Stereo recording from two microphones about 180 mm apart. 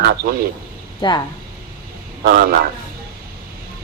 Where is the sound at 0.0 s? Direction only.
65° right (ahead or behind).